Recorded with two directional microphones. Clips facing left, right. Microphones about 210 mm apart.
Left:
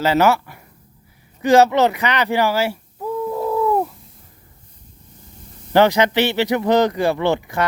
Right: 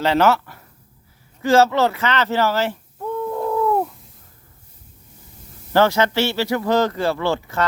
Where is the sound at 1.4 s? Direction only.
15° left (ahead or behind).